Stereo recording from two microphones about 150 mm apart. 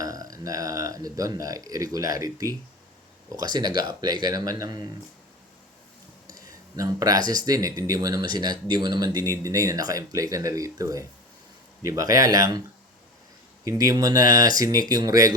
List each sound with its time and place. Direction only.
0.0 s speech: 25° right (ahead or behind)
6.2 s speech: 25° right (ahead or behind)
13.7 s speech: 25° right (ahead or behind)